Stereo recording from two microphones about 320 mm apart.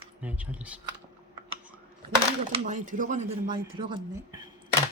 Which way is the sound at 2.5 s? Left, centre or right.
Right.